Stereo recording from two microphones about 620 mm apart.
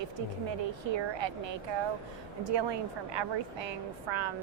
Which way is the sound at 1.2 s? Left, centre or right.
Right.